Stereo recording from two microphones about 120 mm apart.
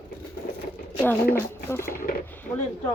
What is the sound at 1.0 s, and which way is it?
Speech, 15° left (ahead or behind).